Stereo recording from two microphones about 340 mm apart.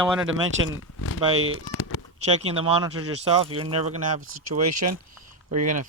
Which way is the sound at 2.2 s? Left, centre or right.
Centre.